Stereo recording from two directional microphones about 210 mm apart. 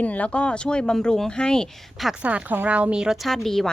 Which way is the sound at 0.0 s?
5° left (ahead or behind).